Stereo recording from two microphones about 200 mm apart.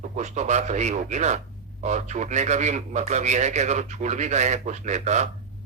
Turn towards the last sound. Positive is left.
turn(degrees=-35)  # may be behind; listen again after turning